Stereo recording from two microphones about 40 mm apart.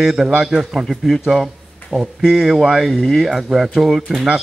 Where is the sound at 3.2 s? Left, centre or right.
Centre.